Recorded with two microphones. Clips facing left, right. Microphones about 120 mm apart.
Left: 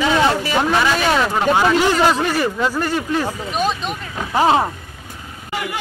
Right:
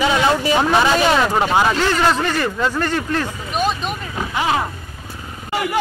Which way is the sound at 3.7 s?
5° right (ahead or behind).